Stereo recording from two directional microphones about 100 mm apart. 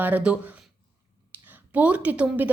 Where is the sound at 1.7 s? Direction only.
15° right (ahead or behind).